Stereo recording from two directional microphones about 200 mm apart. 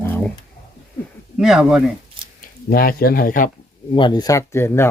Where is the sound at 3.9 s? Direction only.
25° left (ahead or behind).